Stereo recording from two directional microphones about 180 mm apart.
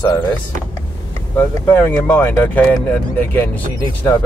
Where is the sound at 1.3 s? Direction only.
15° left (ahead or behind).